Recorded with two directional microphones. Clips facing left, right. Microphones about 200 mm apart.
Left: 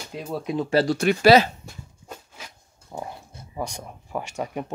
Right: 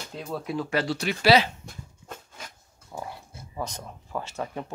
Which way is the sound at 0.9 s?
50° left (ahead or behind).